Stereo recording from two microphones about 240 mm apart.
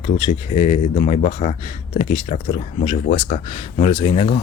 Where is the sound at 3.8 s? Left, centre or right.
Left.